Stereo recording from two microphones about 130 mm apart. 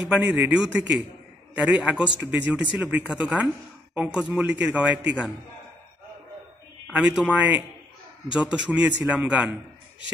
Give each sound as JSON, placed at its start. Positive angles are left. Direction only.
{"t": 0.1, "sound": "a man's voice", "side_deg": -10}
{"t": 6.9, "sound": "a man's voice", "side_deg": -10}